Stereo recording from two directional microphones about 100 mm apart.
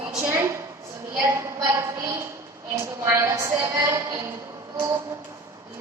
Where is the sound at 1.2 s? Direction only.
30° right (ahead or behind).